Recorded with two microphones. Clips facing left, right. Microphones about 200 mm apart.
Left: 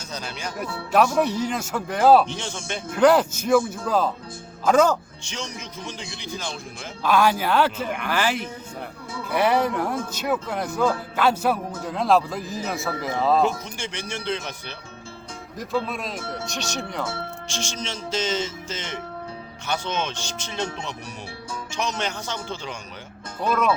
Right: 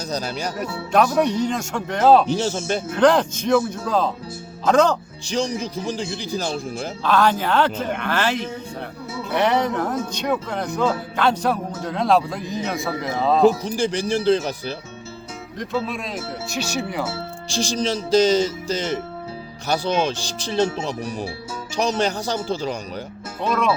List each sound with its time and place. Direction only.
0.1 s speech: 40° right (ahead or behind)
1.2 s speech: 5° left (ahead or behind)
2.2 s speech: 35° right (ahead or behind)
2.9 s speech: 5° left (ahead or behind)
5.2 s speech: 35° right (ahead or behind)
7.0 s speech: 10° left (ahead or behind)
13.7 s speech: 35° right (ahead or behind)
15.5 s speech: centre (ahead or behind)
17.5 s speech: 35° right (ahead or behind)